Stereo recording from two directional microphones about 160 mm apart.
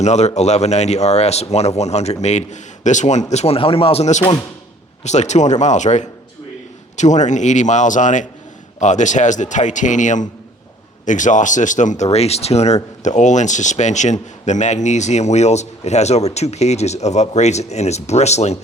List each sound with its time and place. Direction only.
0.0 s speech: 45° left (ahead or behind)